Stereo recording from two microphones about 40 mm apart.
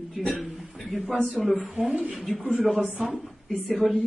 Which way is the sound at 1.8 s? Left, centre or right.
Right.